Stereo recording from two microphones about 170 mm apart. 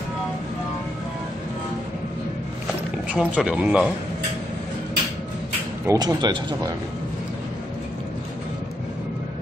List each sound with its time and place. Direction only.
3.1 s speech: 5° right (ahead or behind)
5.9 s speech: 25° right (ahead or behind)